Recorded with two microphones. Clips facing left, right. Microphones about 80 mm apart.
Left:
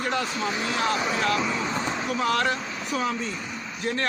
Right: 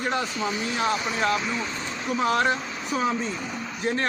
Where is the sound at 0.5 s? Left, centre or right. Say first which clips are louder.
Left 1 dB; left.